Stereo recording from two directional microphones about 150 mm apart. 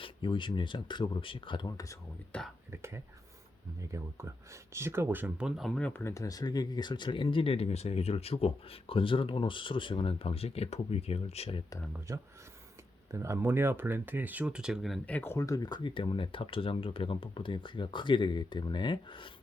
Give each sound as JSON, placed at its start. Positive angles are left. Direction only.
{"t": 0.0, "sound": "speech", "side_deg": 35}
{"t": 2.3, "sound": "speech", "side_deg": 5}
{"t": 3.8, "sound": "speech", "side_deg": -20}
{"t": 5.9, "sound": "speech", "side_deg": 15}
{"t": 11.9, "sound": "speech", "side_deg": -20}